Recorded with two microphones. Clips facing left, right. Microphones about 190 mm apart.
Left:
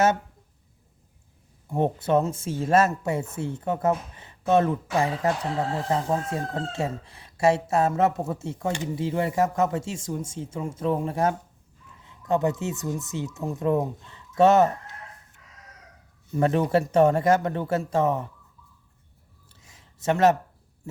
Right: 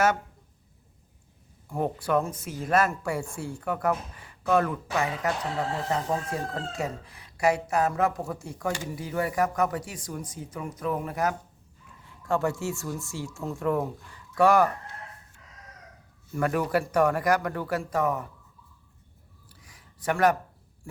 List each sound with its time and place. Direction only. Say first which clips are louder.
1.6 s speech: left 4 dB; 25° left (ahead or behind)
16.3 s speech: left 4 dB; 25° left (ahead or behind)
19.5 s a sound: even; 25° left (ahead or behind)